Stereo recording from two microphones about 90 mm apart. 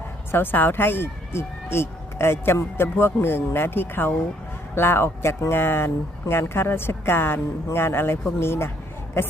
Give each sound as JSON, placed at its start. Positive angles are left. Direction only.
{"t": 0.3, "sound": "speech", "side_deg": 25}